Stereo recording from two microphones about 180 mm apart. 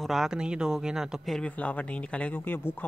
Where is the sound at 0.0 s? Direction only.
Centre (ahead or behind).